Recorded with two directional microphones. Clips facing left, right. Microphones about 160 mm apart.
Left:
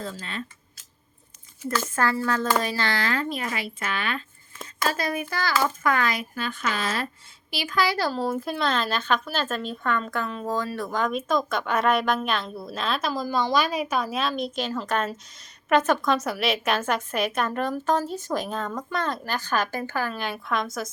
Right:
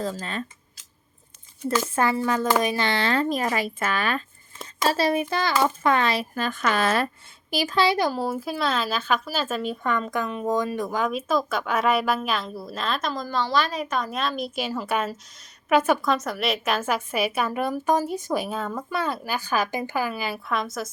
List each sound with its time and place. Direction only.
0.0 s speech: 40° right (ahead or behind)
1.7 s speech: 15° right (ahead or behind); by 4.2 s 40° right (ahead or behind)
4.6 s speech: 30° right (ahead or behind)
6.3 s speech: 45° right (ahead or behind)
7.5 s speech: 40° right (ahead or behind)
7.8 s speech: 20° right (ahead or behind); by 20.9 s centre (ahead or behind)